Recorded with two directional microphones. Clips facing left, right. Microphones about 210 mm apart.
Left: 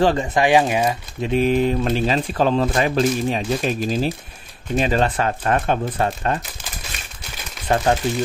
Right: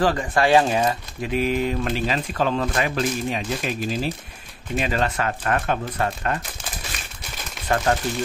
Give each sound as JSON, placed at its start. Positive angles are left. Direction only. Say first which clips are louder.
{"t": 0.0, "sound": "speech", "louder": "left 3 dB", "side_deg": 25}
{"t": 1.2, "sound": "speech", "louder": "left 5 dB", "side_deg": 30}
{"t": 7.6, "sound": "speech", "louder": "left 3 dB", "side_deg": 25}